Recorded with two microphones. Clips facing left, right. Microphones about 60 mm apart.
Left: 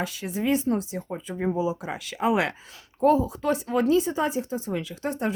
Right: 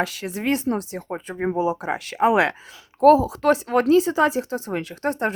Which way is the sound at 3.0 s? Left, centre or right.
Right.